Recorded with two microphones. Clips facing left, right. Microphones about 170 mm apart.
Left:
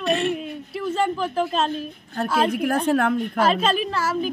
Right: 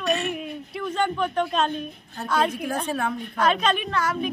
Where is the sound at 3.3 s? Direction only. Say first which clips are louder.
Even; 30° left (ahead or behind).